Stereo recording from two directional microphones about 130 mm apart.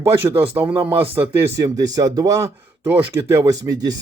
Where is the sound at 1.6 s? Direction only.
30° right (ahead or behind).